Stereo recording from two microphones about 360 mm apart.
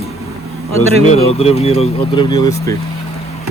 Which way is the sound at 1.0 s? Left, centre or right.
Centre.